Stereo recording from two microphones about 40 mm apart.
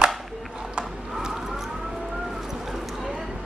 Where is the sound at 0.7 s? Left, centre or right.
Centre.